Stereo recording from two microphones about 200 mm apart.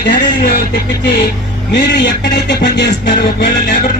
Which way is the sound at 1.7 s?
60° left (ahead or behind).